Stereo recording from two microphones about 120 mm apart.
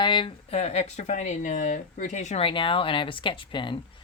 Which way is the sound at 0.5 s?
60° left (ahead or behind).